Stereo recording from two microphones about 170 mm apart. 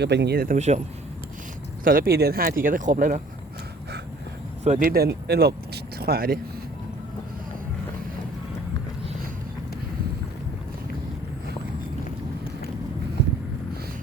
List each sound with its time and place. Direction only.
0.0 s speech: 85° right; by 0.5 s 70° right (ahead or behind)
0.5 s speech: 45° right (ahead or behind)
1.8 s speech: 60° right (ahead or behind)
4.6 s speech: 45° right (ahead or behind)
4.9 s speech: 65° right (ahead or behind)